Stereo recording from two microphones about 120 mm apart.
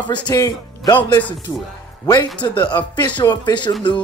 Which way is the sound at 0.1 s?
30° left (ahead or behind).